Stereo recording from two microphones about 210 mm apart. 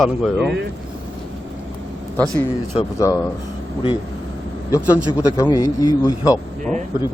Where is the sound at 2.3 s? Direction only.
15° left (ahead or behind).